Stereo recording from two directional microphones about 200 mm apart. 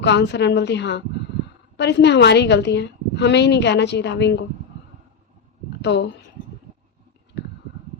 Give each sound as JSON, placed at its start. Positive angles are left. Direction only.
{"t": 0.0, "sound": "a woman's voice", "side_deg": 60}
{"t": 5.8, "sound": "speech", "side_deg": 60}